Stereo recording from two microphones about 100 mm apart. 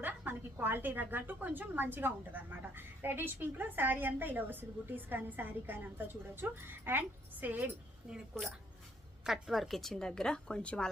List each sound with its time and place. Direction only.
0.0 s a woman's voice: 20° right (ahead or behind)
8.1 s speech: centre (ahead or behind)